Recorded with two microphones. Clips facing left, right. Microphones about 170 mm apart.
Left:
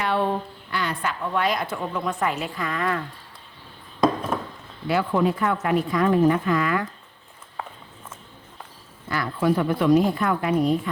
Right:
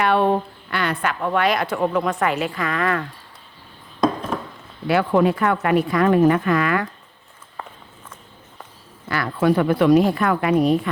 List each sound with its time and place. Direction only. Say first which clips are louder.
0.0 s a woman's voice: right 6 dB; 65° right (ahead or behind); by 3.0 s 80° right
4.3 s a sound: right 1 dB; centre (ahead or behind)
4.9 s a woman's voice: right 4 dB; 70° right (ahead or behind)
9.0 s a woman's voice: right 3 dB; 75° right (ahead or behind)